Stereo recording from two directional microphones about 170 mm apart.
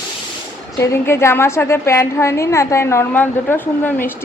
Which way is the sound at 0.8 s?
15° left (ahead or behind).